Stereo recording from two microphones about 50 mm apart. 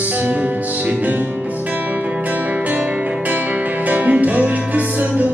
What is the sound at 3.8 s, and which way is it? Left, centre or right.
Music, right.